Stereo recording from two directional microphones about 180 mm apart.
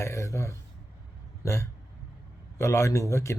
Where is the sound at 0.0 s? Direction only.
15° left (ahead or behind).